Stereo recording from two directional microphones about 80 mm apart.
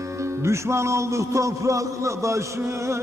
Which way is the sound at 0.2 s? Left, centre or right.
Right.